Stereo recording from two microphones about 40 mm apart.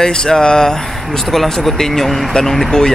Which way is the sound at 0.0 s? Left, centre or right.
Centre.